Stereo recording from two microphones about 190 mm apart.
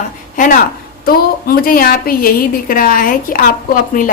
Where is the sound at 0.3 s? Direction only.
45° left (ahead or behind).